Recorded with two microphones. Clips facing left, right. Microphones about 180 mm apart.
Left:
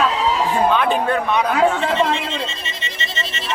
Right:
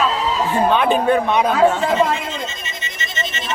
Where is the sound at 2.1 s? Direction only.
30° left (ahead or behind).